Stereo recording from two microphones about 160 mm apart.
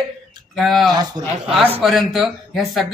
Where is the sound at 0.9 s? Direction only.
25° right (ahead or behind).